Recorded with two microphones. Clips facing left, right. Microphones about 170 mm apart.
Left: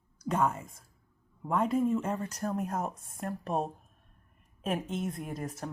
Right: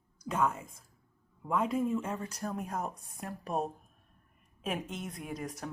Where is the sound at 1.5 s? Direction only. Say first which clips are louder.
Left 3 dB; centre (ahead or behind).